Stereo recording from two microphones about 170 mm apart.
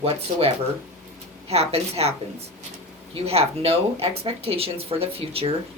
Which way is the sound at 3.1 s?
35° right (ahead or behind).